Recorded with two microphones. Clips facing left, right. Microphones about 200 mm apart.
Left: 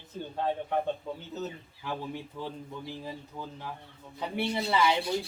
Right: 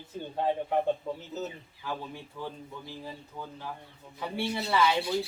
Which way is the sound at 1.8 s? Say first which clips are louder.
Left 2 dB; 15° left (ahead or behind).